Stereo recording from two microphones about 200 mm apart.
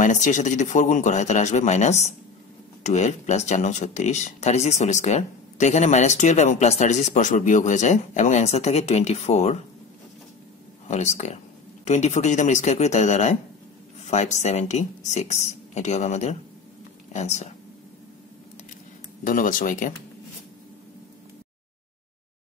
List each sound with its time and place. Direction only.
0.0 s speech: 40° left (ahead or behind)
10.9 s speech: 35° left (ahead or behind)
19.2 s speech: 45° left (ahead or behind)